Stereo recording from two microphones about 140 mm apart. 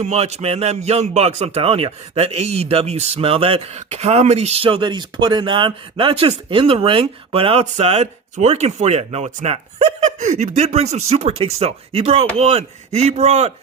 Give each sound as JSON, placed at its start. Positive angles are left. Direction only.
{"t": 0.0, "sound": "a man's voice", "side_deg": -50}